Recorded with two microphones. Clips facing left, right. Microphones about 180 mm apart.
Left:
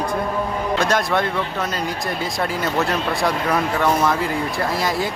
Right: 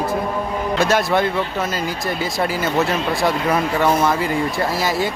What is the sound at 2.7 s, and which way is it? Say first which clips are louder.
Speech: right 2 dB; centre (ahead or behind).